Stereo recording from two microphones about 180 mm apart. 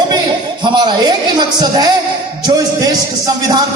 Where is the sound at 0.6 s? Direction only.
25° right (ahead or behind).